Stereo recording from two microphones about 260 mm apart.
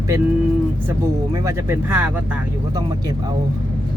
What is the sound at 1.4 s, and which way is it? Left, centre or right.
Speech, centre.